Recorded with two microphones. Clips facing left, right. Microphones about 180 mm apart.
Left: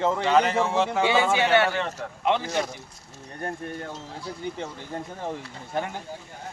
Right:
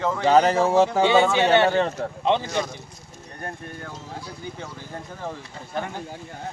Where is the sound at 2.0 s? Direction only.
35° right (ahead or behind).